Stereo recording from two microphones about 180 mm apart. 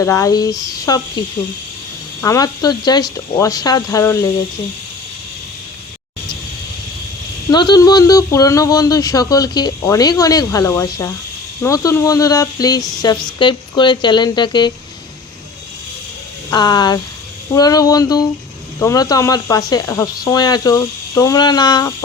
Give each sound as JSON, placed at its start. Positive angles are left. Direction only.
{"t": 0.0, "sound": "speech", "side_deg": 20}
{"t": 2.2, "sound": "speech", "side_deg": 20}
{"t": 7.5, "sound": "speech", "side_deg": 25}
{"t": 16.5, "sound": "speech", "side_deg": 20}